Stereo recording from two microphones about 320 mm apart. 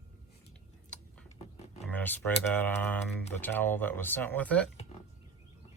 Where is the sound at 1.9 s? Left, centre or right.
Centre.